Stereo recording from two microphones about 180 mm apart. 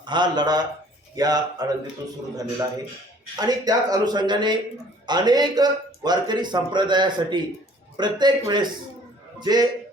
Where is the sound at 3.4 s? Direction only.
20° right (ahead or behind).